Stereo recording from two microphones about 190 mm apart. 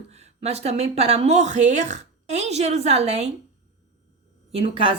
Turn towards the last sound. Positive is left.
turn(degrees=-30)  # may be behind; listen again after turning